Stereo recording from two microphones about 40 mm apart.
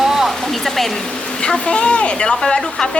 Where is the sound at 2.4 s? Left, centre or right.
Centre.